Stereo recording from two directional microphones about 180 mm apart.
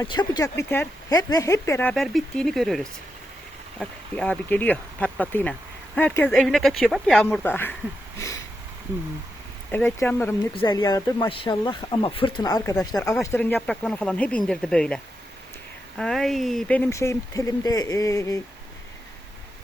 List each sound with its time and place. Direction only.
0.0 s speech: 20° left (ahead or behind)
9.7 s speech: 10° left (ahead or behind)
10.5 s speech: 25° left (ahead or behind)